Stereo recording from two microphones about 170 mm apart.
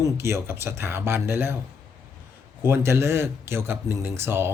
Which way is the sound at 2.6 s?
15° right (ahead or behind).